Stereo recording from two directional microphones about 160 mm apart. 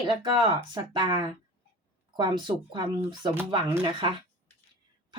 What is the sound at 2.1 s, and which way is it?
A woman's voice, 30° right (ahead or behind).